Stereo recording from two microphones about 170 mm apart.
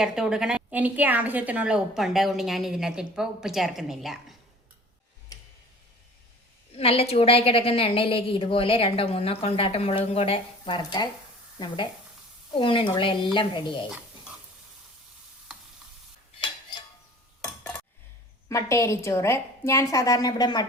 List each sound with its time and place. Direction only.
0.0 s a woman's voice: 5° right (ahead or behind)
6.7 s a woman's voice: 35° left (ahead or behind)
12.5 s speech: 30° left (ahead or behind)
17.4 s cutlery: 10° left (ahead or behind)
18.4 s a woman's voice: 15° left (ahead or behind)